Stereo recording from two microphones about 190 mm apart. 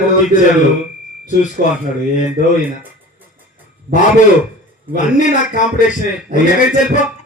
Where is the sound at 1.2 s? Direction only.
40° left (ahead or behind).